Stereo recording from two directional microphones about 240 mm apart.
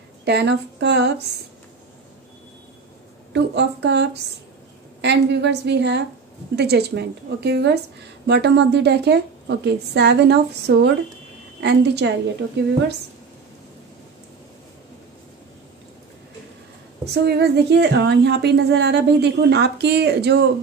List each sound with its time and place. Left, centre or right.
0.2 s a woman's voice: right
3.3 s a woman's voice: right
17.0 s a woman's voice: right